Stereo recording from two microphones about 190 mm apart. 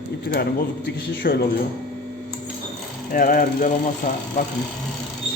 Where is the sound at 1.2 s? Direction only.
50° left (ahead or behind).